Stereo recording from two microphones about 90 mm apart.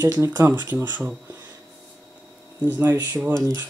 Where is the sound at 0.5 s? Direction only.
25° right (ahead or behind).